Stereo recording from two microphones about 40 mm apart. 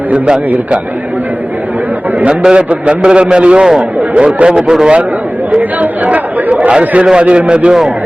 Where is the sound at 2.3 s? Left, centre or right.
Right.